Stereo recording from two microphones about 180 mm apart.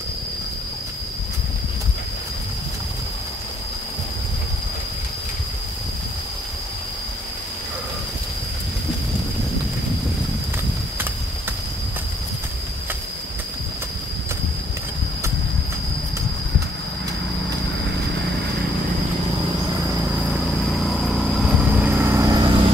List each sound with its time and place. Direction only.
20.6 s vehicle: centre (ahead or behind); by 22.6 s 20° right (ahead or behind)